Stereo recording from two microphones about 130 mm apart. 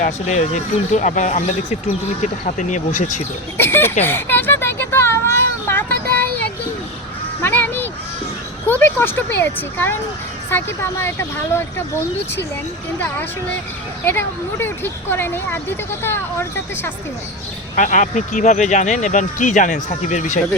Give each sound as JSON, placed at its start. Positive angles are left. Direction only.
{"t": 0.0, "sound": "speech", "side_deg": 65}
{"t": 2.2, "sound": "speech", "side_deg": 75}
{"t": 3.6, "sound": "speech", "side_deg": 15}
{"t": 4.0, "sound": "a sound", "side_deg": 15}
{"t": 8.8, "sound": "a woman's voice", "side_deg": 15}
{"t": 14.0, "sound": "speech", "side_deg": 15}
{"t": 17.7, "sound": "speech", "side_deg": 80}
{"t": 19.9, "sound": "speech", "side_deg": 60}